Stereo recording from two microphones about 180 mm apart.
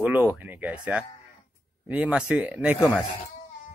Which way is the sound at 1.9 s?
5° right (ahead or behind).